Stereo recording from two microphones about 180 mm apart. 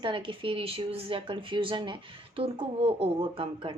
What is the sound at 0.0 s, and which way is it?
Speech, 30° right (ahead or behind).